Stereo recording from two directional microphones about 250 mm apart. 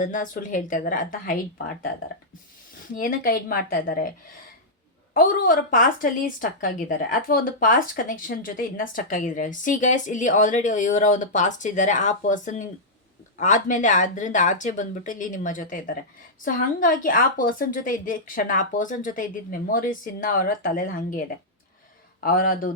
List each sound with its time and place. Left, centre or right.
0.0 s a woman's voice: left
2.9 s a woman's voice: left
5.1 s a woman's voice: left
22.2 s a woman's voice: left